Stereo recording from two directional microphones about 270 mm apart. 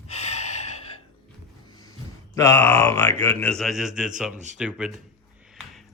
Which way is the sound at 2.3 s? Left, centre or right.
Centre.